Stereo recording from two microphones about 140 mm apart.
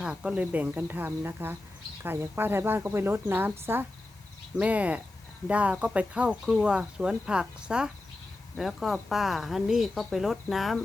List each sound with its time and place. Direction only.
0.0 s speech: 5° right (ahead or behind)